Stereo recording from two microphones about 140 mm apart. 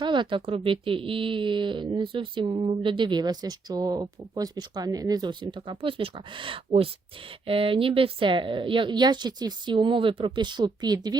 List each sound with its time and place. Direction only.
0.0 s speech: 35° right (ahead or behind)